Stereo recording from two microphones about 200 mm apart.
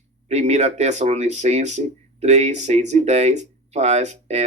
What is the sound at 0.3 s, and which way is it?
Speech, 35° right (ahead or behind).